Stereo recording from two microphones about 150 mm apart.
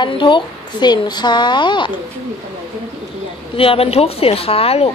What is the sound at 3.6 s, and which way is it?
A woman's voice, 40° left (ahead or behind).